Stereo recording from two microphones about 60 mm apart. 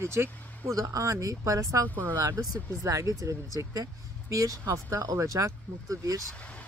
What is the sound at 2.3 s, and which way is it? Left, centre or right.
Speech, right.